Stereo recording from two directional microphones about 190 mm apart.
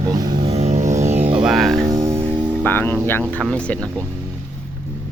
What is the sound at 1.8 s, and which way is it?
Music, 15° right (ahead or behind).